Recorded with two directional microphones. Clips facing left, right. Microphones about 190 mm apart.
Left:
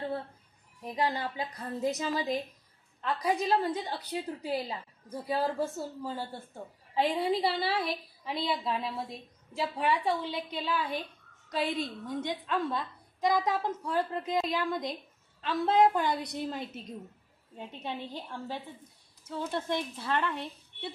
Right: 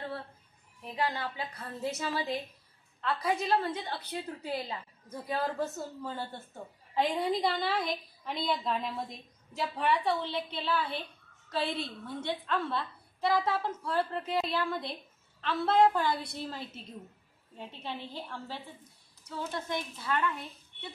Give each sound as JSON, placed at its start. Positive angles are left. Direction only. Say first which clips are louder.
{"t": 0.8, "sound": "a woman's voice", "louder": "left 2 dB", "side_deg": 15}